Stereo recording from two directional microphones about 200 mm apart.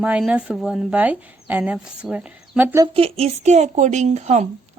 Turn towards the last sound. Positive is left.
turn(degrees=-35)  # may be behind; listen again after turning